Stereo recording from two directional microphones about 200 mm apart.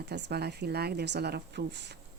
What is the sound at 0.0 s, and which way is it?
Speech, 55° right (ahead or behind).